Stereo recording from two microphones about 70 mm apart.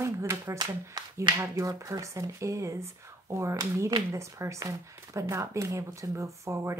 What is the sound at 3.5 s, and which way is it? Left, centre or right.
Speech, right.